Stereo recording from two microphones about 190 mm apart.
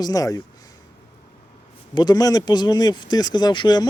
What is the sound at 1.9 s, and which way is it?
Speech, 20° left (ahead or behind).